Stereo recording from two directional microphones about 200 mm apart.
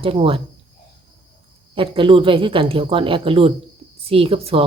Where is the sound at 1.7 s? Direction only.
25° right (ahead or behind).